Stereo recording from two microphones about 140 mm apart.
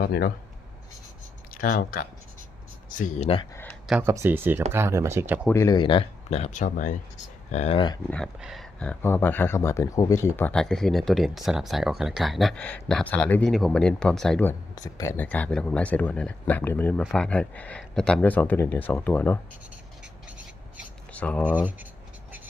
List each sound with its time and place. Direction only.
0.0 s speech: 90° left
1.5 s speech: 90° left
2.9 s speech: 70° left (ahead or behind)
3.5 s a sound: 15° left (ahead or behind)
4.0 s speech: 20° right (ahead or behind)
5.5 s speech: 20° left (ahead or behind)
5.7 s speech: 35° left (ahead or behind); by 6.9 s 65° left (ahead or behind)
7.5 s speech: 50° left (ahead or behind)
8.4 s speech: 5° right (ahead or behind)
8.8 s speech: 10° left (ahead or behind)
14.8 s speech: 25° left (ahead or behind)
15.1 s speech: 10° left (ahead or behind)
21.1 s a sound: 10° left (ahead or behind)
21.4 s speech: 10° right (ahead or behind)